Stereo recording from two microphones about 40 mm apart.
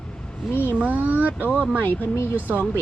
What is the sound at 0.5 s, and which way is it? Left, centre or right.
Speech, left.